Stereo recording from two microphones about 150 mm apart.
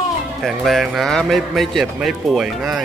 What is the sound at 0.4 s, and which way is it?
A man's voice, centre (ahead or behind).